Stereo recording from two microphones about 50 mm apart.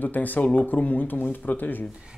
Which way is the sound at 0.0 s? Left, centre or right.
Left.